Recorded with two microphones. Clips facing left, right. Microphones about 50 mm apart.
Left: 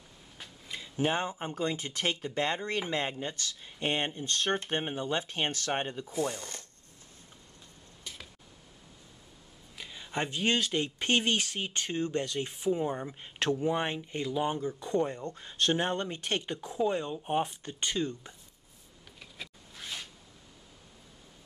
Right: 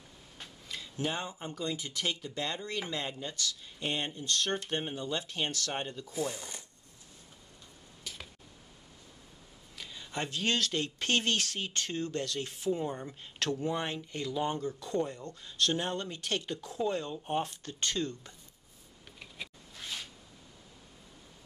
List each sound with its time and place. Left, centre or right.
0.7 s tick-tock: centre
1.0 s speech: left
6.1 s speech: centre
9.8 s speech: centre
19.7 s a sound: centre